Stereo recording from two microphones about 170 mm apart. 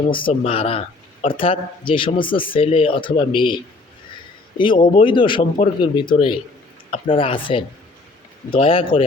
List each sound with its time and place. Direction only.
0.1 s speech: 30° left (ahead or behind)